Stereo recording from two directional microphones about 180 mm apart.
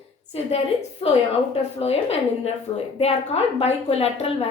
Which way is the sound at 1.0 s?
30° left (ahead or behind).